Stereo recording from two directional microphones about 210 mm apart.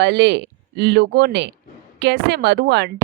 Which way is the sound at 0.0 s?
55° right (ahead or behind).